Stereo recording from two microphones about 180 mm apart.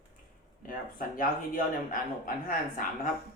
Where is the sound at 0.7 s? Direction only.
50° left (ahead or behind).